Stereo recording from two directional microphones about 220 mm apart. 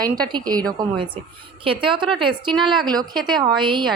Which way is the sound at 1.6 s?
25° right (ahead or behind).